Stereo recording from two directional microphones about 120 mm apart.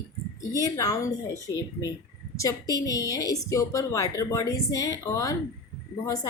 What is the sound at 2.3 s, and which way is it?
A woman's voice, 30° left (ahead or behind).